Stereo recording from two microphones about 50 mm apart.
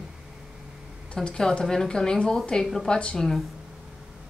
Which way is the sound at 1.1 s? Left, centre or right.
Centre.